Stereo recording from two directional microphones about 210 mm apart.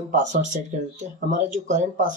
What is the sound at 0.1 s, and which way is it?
Speech, 35° right (ahead or behind).